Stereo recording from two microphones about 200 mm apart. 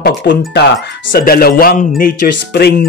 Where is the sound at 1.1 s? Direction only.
45° left (ahead or behind).